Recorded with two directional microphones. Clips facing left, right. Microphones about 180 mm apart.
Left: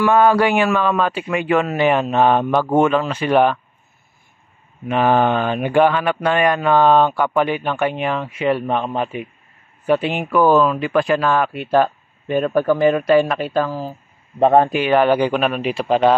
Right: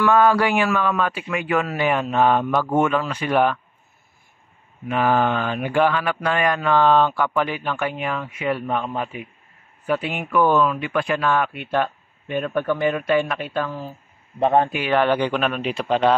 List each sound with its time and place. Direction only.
0.0 s mantra: 20° left (ahead or behind)
4.8 s mantra: 25° left (ahead or behind)
9.8 s speech: 25° left (ahead or behind)
14.9 s speech: 10° left (ahead or behind)